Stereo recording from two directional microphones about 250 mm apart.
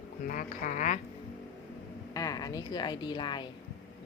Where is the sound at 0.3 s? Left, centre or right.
Left.